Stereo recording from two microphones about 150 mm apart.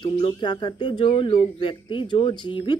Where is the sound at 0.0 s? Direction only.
30° left (ahead or behind).